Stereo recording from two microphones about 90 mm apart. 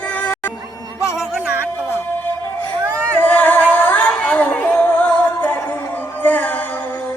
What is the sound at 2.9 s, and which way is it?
Singing, 20° left (ahead or behind).